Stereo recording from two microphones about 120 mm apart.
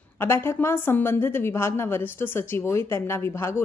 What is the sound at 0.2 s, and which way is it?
A woman's voice, 20° left (ahead or behind).